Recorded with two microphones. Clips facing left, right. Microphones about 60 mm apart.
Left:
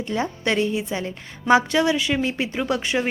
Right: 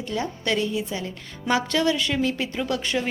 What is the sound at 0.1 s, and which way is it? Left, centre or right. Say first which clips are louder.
A woman's voice: left 2 dB; left.